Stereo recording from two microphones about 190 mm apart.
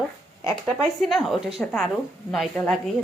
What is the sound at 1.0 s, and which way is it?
A woman's voice, centre (ahead or behind).